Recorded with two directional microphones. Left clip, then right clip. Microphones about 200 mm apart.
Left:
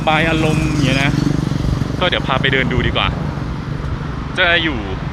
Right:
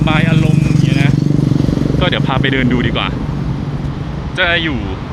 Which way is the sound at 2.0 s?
5° left (ahead or behind).